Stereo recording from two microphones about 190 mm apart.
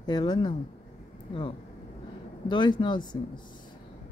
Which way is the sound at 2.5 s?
25° left (ahead or behind).